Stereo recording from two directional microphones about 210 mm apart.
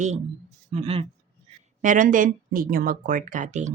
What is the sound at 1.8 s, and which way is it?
A woman's voice, 35° right (ahead or behind).